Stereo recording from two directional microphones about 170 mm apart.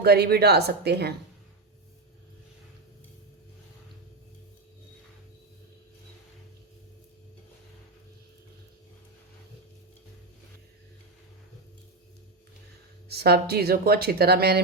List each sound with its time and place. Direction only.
0.0 s speech: 70° right (ahead or behind)
13.1 s speech: 70° right (ahead or behind)